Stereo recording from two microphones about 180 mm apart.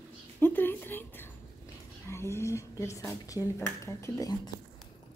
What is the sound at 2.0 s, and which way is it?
Speech, 15° left (ahead or behind).